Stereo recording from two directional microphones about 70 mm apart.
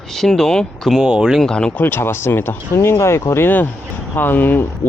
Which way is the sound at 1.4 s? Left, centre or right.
Centre.